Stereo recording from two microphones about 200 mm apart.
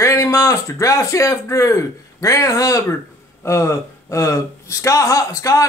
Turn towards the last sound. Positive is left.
turn(degrees=15)  # may be behind; listen again after turning